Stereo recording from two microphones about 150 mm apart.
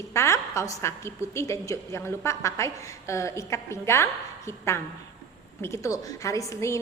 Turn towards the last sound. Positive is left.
turn(degrees=20)  # may be behind; listen again after turning